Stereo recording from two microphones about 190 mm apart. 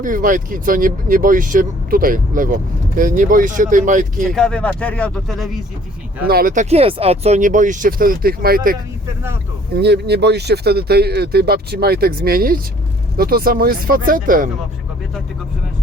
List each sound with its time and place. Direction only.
0.0 s speech: 45° right (ahead or behind)
4.4 s speech: 5° left (ahead or behind)
6.2 s speech: 50° right (ahead or behind)